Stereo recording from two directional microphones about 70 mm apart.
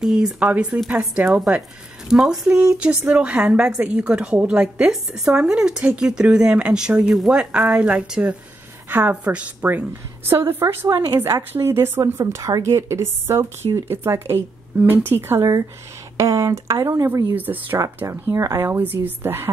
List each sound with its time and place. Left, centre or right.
0.0 s a woman's voice: centre
10.2 s speech: right
16.2 s speech: right
17.4 s speech: right
18.3 s speech: right
18.6 s speech: right